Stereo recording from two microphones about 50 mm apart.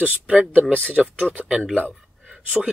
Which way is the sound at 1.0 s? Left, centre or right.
Right.